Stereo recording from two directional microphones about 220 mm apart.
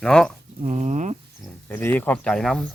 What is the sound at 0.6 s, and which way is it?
Speech, 30° right (ahead or behind).